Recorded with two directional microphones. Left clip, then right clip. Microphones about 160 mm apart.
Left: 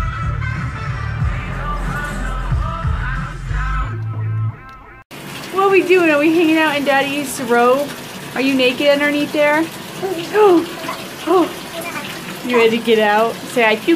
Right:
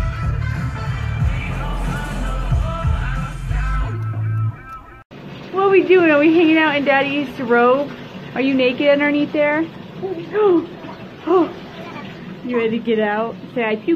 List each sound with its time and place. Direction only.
5.6 s speech: 10° left (ahead or behind)
12.5 s speech: 10° left (ahead or behind)